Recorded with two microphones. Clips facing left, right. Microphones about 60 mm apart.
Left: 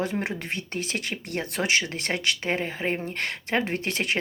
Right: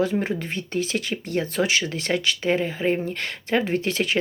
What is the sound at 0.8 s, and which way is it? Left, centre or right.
Speech, left.